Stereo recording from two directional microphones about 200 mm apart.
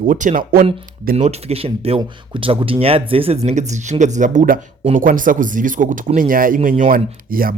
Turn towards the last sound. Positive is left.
turn(degrees=-45)  # may be behind; listen again after turning